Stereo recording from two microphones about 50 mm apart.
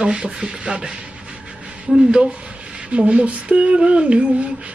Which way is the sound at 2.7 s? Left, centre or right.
Centre.